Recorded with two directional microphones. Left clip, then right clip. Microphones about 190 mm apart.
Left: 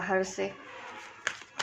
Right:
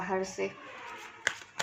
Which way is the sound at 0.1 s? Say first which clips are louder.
Left 4 dB; 35° left (ahead or behind).